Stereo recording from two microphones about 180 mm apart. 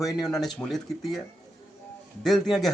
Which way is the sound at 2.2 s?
Centre (ahead or behind).